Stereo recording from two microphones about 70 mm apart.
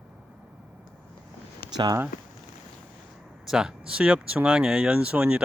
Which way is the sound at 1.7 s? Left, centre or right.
Right.